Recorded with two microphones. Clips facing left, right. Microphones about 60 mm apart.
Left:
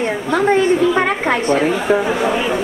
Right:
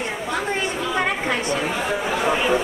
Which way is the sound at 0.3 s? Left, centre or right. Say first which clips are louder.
Left 12 dB; left.